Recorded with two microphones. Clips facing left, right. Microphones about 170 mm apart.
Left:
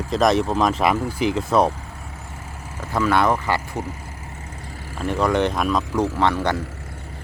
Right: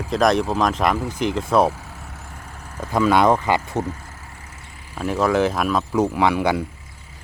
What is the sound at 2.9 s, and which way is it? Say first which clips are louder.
Speech: right 3 dB; 15° right (ahead or behind).